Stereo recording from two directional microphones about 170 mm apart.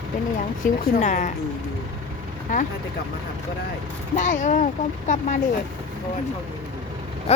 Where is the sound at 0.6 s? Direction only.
45° left (ahead or behind).